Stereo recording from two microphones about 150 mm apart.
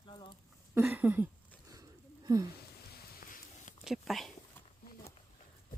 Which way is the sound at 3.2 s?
65° left (ahead or behind).